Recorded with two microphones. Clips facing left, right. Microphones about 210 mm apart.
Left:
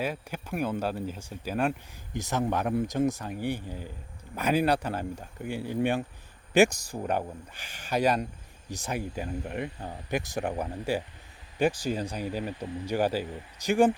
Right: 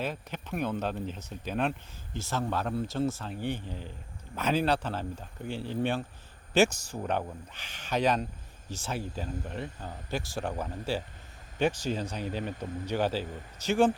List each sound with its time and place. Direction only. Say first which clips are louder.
0.0 s speech: left 2 dB; 10° left (ahead or behind)